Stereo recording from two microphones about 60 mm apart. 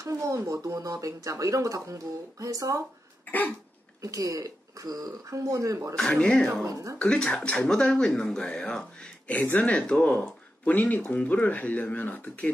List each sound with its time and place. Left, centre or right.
0.0 s a sound: right
0.5 s speech: right
3.3 s cough: left
4.0 s speech: right
5.9 s speech: centre
6.6 s speech: right
7.0 s speech: centre
9.4 s speech: left
9.7 s speech: centre
10.6 s speech: left